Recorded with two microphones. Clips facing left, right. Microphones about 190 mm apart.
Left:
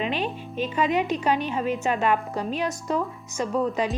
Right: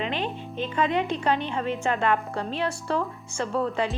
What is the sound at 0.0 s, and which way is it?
Music, 15° left (ahead or behind).